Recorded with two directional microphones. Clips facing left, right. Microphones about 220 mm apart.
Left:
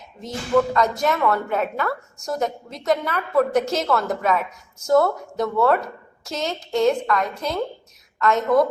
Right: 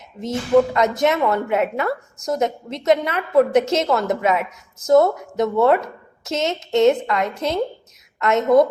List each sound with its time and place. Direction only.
0.2 s a woman's voice: 20° right (ahead or behind)